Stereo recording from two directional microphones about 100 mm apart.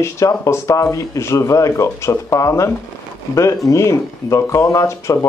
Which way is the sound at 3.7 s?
30° left (ahead or behind).